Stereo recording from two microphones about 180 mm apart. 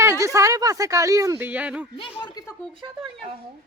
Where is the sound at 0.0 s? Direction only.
15° right (ahead or behind).